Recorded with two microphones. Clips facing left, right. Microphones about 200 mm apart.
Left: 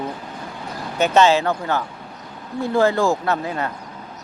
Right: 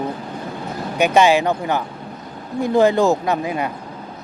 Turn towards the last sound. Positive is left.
turn(degrees=-15)  # may be behind; listen again after turning